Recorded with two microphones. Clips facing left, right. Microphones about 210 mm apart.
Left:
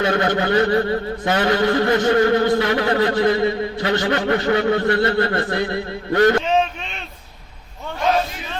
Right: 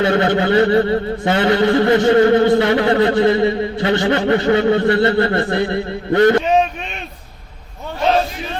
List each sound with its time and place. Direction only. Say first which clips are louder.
0.2 s a man's voice: right 4 dB; 25° right (ahead or behind)